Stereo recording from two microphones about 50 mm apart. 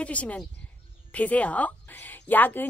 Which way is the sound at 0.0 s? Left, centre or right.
Left.